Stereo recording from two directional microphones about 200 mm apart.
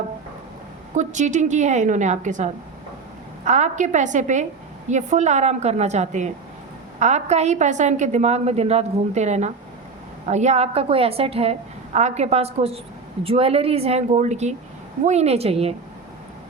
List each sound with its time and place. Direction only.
0.9 s a woman's voice: 35° right (ahead or behind)